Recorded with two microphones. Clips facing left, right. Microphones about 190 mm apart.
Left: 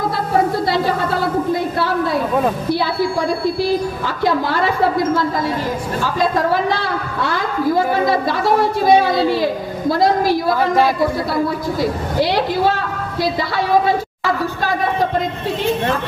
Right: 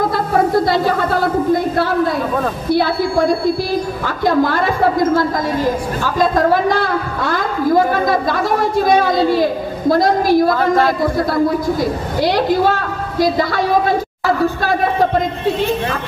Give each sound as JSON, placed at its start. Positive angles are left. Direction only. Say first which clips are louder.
{"t": 2.7, "sound": "a man's voice", "louder": "right 3 dB", "side_deg": -50}
{"t": 8.8, "sound": "a man's voice", "louder": "left 1 dB", "side_deg": -45}
{"t": 12.2, "sound": "a man's voice", "louder": "right 2 dB", "side_deg": -45}